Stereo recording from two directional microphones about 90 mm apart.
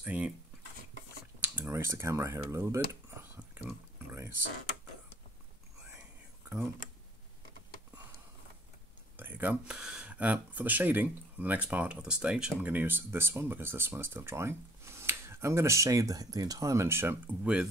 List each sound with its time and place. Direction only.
0.0 s speech: 20° right (ahead or behind)
1.7 s speech: 30° right (ahead or behind)
9.1 s a sound: 20° right (ahead or behind)
9.8 s speech: 10° right (ahead or behind)